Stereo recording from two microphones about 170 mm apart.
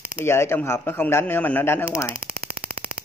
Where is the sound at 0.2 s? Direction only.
15° left (ahead or behind).